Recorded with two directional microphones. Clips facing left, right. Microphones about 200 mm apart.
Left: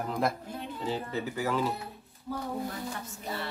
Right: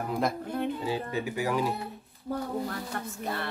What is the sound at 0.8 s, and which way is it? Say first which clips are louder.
Speech: right 2 dB; 10° right (ahead or behind).